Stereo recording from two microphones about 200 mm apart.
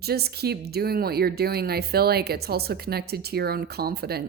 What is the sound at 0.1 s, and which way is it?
Speech, 50° right (ahead or behind).